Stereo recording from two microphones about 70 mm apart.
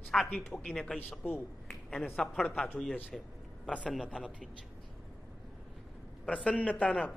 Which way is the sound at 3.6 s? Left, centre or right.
Centre.